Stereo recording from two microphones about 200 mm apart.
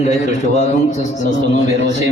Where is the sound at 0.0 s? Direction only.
35° left (ahead or behind).